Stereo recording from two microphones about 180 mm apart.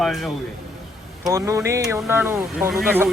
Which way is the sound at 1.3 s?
15° right (ahead or behind).